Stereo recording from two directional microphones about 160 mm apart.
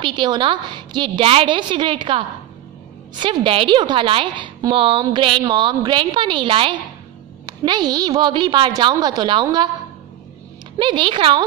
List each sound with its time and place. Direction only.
0.0 s a woman's voice: 30° right (ahead or behind)
10.8 s a woman's voice: 30° right (ahead or behind)